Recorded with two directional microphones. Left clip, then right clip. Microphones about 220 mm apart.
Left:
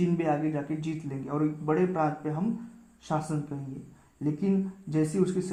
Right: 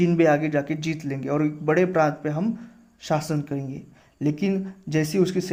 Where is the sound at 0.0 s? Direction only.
30° right (ahead or behind).